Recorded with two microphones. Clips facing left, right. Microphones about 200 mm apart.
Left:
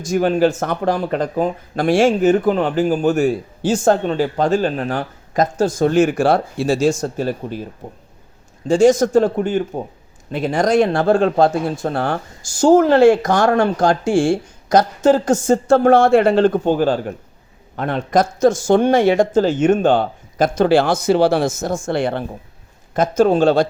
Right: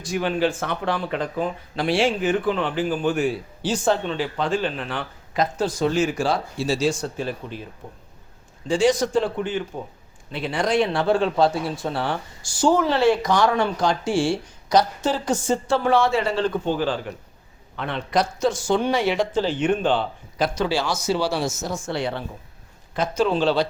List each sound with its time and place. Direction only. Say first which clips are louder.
0.0 s speech: left 7 dB; 45° left (ahead or behind)
8.6 s speech: left 7 dB; 45° left (ahead or behind)